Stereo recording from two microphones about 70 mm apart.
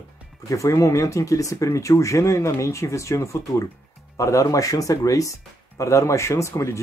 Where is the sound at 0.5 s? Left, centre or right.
Left.